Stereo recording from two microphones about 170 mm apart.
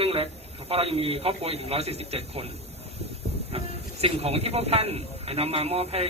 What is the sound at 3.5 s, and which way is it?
Train, 35° right (ahead or behind).